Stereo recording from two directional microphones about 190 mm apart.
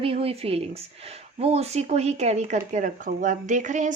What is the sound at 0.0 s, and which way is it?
Speech, 30° right (ahead or behind).